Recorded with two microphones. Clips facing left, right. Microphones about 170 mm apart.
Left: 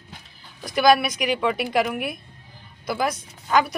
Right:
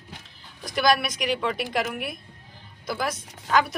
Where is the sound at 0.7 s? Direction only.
Centre (ahead or behind).